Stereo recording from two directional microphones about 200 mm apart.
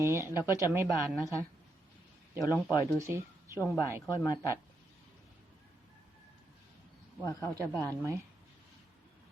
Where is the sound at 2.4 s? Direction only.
15° left (ahead or behind).